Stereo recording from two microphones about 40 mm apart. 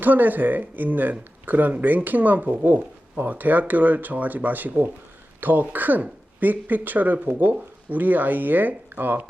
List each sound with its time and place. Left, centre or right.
0.0 s speech: right